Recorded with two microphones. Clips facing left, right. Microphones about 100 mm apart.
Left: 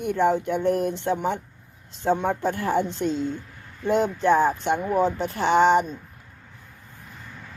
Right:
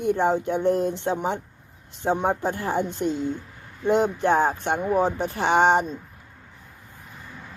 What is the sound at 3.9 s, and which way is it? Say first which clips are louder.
Speech: left 1 dB; 55° right (ahead or behind).